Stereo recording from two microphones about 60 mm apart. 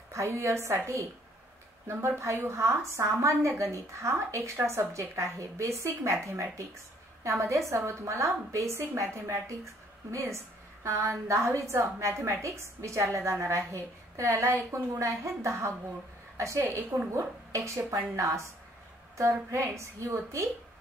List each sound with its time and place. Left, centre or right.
0.1 s a woman's voice: right